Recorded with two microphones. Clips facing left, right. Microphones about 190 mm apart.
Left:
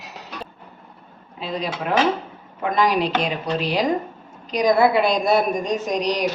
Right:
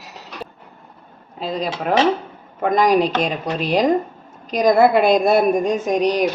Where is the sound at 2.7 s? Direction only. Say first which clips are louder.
Right 4 dB; 45° right (ahead or behind).